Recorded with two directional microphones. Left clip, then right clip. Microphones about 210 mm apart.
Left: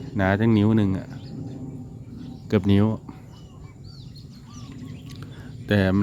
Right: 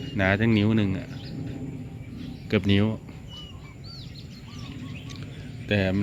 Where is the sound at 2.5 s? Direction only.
20° left (ahead or behind).